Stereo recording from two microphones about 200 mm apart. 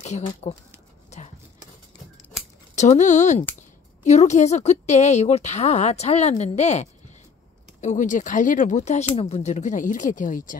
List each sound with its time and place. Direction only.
0.0 s speech: 35° left (ahead or behind)
2.7 s speech: 35° left (ahead or behind)